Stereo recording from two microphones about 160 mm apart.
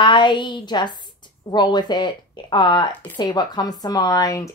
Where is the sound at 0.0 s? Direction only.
30° left (ahead or behind).